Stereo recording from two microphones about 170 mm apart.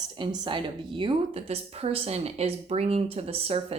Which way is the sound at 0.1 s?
25° right (ahead or behind).